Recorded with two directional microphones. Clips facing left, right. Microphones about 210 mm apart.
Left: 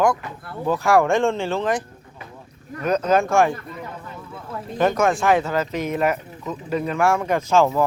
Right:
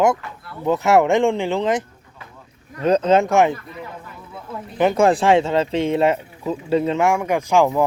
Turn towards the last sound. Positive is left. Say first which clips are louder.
# right 1 dB
turn(degrees=-15)  # may be behind; listen again after turning